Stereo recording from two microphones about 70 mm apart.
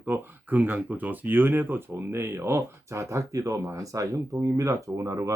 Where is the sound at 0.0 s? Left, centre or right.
Right.